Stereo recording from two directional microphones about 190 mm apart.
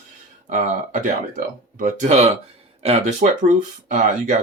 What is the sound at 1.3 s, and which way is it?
Speech, 45° right (ahead or behind).